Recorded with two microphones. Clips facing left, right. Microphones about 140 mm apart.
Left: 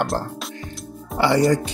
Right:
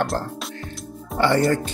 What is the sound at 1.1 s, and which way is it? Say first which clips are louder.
Speech: left 1 dB; 10° left (ahead or behind).